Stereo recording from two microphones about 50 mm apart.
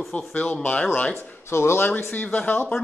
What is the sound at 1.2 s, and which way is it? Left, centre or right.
Speech, left.